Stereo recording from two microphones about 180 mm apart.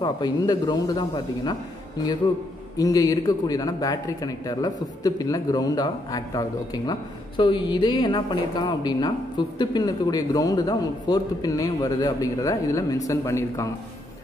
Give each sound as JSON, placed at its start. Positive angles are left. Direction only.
{"t": 0.0, "sound": "a man's voice", "side_deg": 20}
{"t": 2.8, "sound": "a man's voice", "side_deg": 20}